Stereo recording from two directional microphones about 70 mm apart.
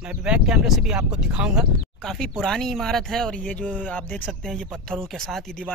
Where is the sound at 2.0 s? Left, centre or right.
Centre.